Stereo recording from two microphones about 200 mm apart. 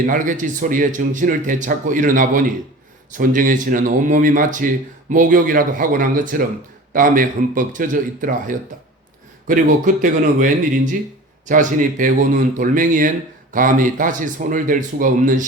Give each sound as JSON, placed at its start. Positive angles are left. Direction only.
{"t": 0.0, "sound": "speech", "side_deg": -40}